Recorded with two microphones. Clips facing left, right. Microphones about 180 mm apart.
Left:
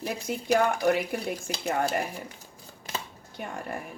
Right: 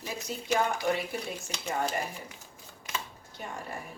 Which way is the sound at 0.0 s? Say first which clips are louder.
Left 5 dB; 60° left (ahead or behind).